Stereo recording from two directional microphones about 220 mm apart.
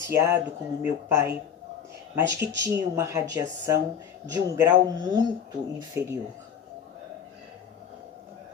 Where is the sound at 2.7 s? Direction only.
15° right (ahead or behind).